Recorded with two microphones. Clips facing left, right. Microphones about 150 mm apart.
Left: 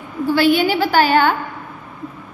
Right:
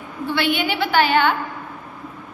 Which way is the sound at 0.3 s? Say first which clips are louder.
Left 7 dB; 40° left (ahead or behind).